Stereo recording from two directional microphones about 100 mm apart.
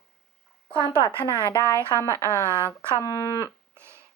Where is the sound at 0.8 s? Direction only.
30° right (ahead or behind).